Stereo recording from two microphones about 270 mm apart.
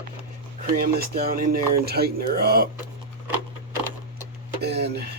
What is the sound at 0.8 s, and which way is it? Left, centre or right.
Speech, right.